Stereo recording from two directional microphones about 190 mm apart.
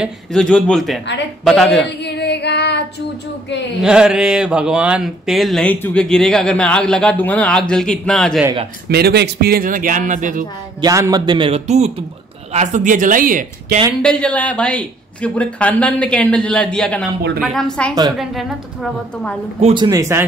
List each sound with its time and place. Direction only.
0.0 s speech: 5° left (ahead or behind)
1.9 s female singing: 60° left (ahead or behind)
3.8 s speech: 5° right (ahead or behind)
8.8 s a man's voice: 60° right (ahead or behind); by 10.4 s 40° right (ahead or behind)
10.8 s a man's voice: 20° right (ahead or behind); by 13.7 s 45° right (ahead or behind)
14.0 s speech: 5° left (ahead or behind)
19.6 s speech: 25° right (ahead or behind)